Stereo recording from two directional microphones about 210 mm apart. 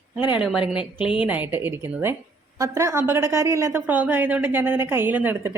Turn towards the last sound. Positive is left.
turn(degrees=-10)  # may be behind; listen again after turning